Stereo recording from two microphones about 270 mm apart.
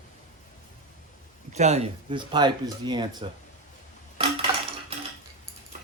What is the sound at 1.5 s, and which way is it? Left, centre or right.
Speech, right.